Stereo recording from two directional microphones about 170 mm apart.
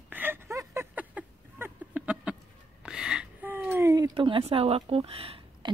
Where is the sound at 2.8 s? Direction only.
5° right (ahead or behind).